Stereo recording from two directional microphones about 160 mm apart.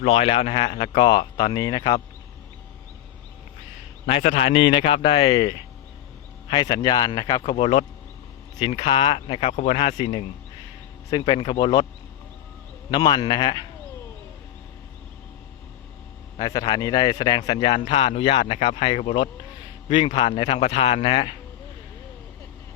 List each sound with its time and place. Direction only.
0.0 s speech: 40° left (ahead or behind)
4.0 s speech: 40° left (ahead or behind); by 7.5 s 25° left (ahead or behind)
7.5 s speech: 35° left (ahead or behind)
12.9 s speech: 30° left (ahead or behind)
16.4 s speech: 25° left (ahead or behind)